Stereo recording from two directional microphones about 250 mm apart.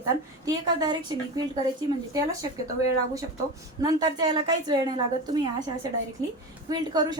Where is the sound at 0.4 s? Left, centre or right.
Centre.